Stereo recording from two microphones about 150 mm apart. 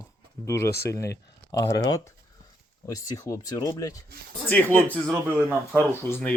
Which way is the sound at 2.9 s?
20° left (ahead or behind).